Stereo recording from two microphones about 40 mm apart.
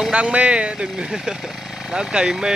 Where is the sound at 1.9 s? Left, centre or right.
Right.